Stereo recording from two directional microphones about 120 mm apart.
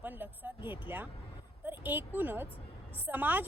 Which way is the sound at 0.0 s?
15° right (ahead or behind).